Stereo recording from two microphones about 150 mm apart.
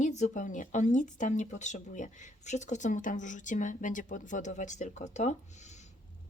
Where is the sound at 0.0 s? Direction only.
55° left (ahead or behind).